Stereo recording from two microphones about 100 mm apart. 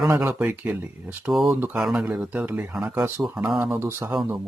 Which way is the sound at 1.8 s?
5° right (ahead or behind).